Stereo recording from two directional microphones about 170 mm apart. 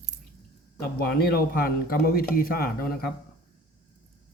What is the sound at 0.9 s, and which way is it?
A man's voice, 65° left (ahead or behind).